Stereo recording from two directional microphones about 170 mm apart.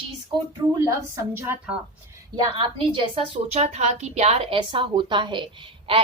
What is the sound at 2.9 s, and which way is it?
A woman's voice, 35° right (ahead or behind).